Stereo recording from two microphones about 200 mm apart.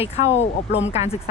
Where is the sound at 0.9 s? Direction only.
35° left (ahead or behind).